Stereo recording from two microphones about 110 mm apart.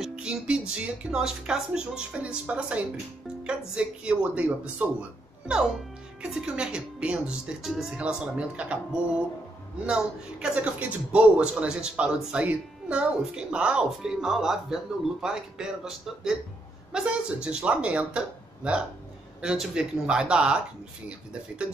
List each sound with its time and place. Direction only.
0.0 s a man's voice: 5° right (ahead or behind)
9.8 s a man's voice: 10° right (ahead or behind)